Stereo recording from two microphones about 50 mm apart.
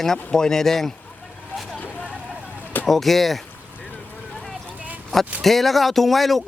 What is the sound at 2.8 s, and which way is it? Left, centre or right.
Speech, centre.